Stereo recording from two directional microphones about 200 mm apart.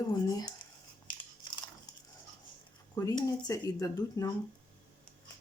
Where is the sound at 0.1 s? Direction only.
20° left (ahead or behind).